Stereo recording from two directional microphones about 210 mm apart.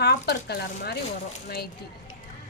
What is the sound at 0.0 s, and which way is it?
Speech, 50° left (ahead or behind).